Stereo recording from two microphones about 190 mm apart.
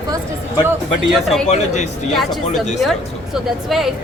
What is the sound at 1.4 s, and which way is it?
Speech, 35° left (ahead or behind).